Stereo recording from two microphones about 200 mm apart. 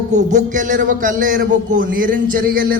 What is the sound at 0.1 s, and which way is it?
A man's voice, 35° right (ahead or behind).